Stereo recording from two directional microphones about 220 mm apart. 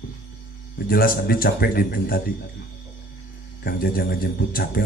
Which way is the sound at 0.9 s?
40° left (ahead or behind).